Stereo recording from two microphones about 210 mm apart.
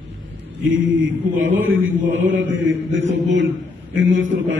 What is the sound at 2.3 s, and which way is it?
Mantra, 65° right (ahead or behind).